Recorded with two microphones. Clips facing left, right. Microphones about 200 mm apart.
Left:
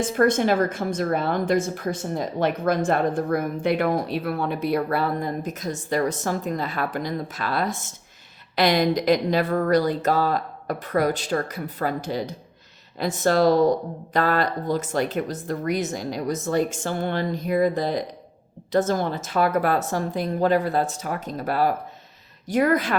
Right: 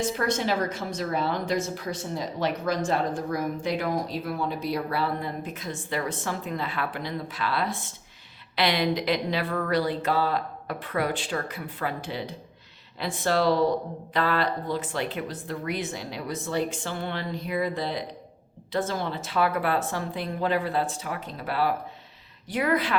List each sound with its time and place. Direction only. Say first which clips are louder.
0.0 s a woman's voice: left 7 dB; 50° left (ahead or behind)